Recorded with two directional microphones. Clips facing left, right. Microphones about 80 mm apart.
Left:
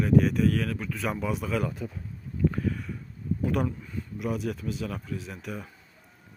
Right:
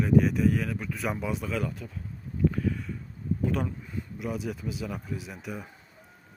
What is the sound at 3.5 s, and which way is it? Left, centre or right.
Speech, centre.